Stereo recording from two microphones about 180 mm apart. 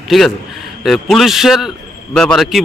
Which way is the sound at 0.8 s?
Centre (ahead or behind).